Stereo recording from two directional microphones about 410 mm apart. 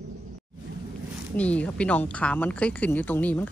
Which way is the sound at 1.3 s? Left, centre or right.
Centre.